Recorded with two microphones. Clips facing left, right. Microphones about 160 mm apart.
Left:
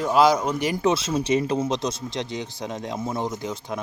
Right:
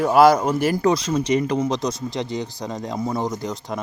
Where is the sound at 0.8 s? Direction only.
5° left (ahead or behind).